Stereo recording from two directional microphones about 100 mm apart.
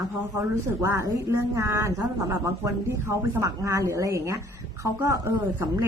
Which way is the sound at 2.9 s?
35° right (ahead or behind).